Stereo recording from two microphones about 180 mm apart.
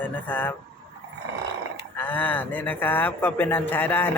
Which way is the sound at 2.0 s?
10° left (ahead or behind).